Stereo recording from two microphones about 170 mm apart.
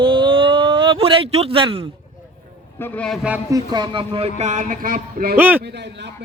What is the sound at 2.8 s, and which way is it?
Speech, 10° left (ahead or behind).